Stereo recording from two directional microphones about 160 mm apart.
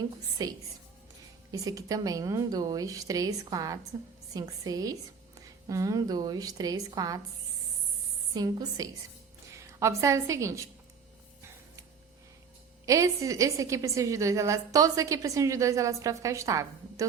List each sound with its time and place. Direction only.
0.0 s a woman's voice: 25° right (ahead or behind)
8.3 s a woman's voice: 25° right (ahead or behind)
12.8 s a woman's voice: 20° right (ahead or behind)